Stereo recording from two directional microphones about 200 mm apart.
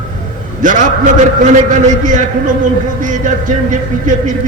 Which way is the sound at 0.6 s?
40° right (ahead or behind).